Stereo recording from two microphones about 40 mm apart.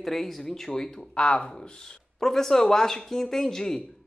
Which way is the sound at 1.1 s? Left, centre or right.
Left.